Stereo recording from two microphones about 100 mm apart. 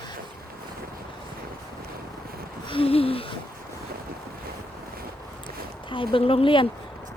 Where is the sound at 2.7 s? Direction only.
70° left (ahead or behind).